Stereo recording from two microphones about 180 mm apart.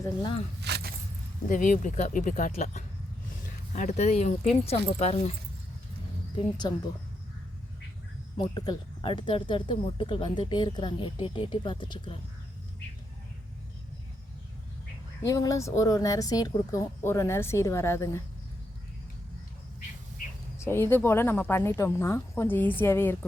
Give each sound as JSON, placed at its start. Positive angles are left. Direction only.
{"t": 0.0, "sound": "speech", "side_deg": 25}
{"t": 0.6, "sound": "keys jangling", "side_deg": -60}
{"t": 1.5, "sound": "speech", "side_deg": 45}
{"t": 6.3, "sound": "speech", "side_deg": 25}
{"t": 8.4, "sound": "speech", "side_deg": 25}
{"t": 15.2, "sound": "speech", "side_deg": 15}
{"t": 20.7, "sound": "speech", "side_deg": 10}